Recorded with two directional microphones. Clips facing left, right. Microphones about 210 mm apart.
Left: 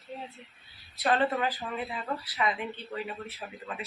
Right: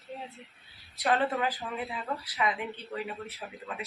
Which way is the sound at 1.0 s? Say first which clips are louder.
Left 1 dB; 15° right (ahead or behind).